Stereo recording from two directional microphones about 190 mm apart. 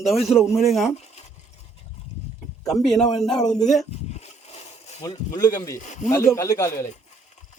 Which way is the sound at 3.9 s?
35° left (ahead or behind).